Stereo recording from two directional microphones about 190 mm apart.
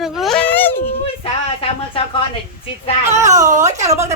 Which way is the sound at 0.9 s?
30° left (ahead or behind).